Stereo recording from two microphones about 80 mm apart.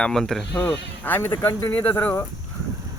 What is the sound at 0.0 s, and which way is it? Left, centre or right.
Speech, centre.